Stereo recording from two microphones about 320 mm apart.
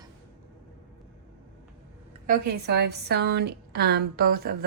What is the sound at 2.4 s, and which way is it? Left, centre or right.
A woman's voice, right.